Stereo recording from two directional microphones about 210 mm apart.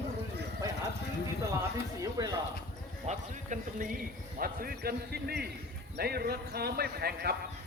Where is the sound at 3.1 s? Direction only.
40° right (ahead or behind).